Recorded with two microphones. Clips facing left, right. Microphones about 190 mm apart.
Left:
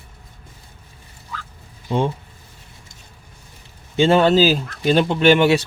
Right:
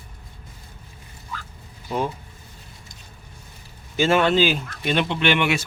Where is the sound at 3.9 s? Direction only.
30° left (ahead or behind).